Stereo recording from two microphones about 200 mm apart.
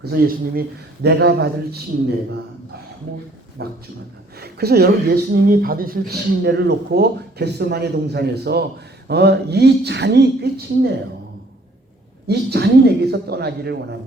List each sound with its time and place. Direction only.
0.0 s speech: 50° right (ahead or behind)
3.6 s speech: 55° right (ahead or behind)
12.3 s speech: 55° right (ahead or behind)